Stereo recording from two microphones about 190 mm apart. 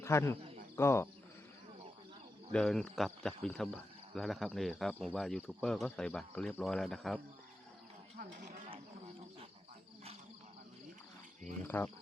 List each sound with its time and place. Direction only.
0.0 s speech: 15° left (ahead or behind)
2.5 s speech: 5° left (ahead or behind)
11.7 s speech: 10° left (ahead or behind)